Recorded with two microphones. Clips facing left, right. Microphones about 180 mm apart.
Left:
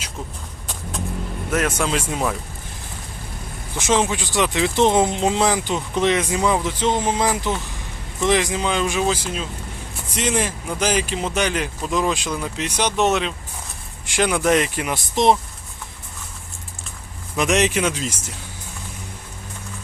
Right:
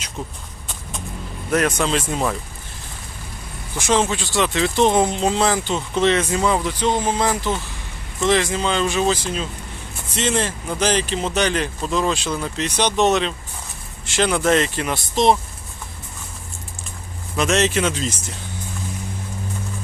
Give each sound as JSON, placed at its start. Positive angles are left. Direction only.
{"t": 1.5, "sound": "speech", "side_deg": 5}
{"t": 3.8, "sound": "speech", "side_deg": 15}
{"t": 17.3, "sound": "speech", "side_deg": 15}